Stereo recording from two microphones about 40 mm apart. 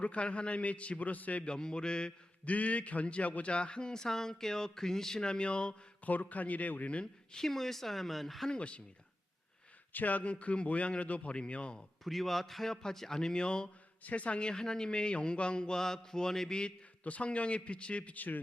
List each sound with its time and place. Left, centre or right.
0.0 s a man's voice: left
1.5 s a man's voice: left
2.4 s a man's voice: left
6.1 s a man's voice: left
7.0 s speech: centre
8.4 s a man's voice: left
9.9 s a man's voice: left
12.0 s a man's voice: centre; by 13.7 s left
14.0 s a man's voice: left; by 16.6 s centre
17.0 s a man's voice: left